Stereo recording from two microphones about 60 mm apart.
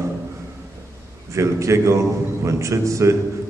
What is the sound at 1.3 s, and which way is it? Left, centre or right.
A man's voice, right.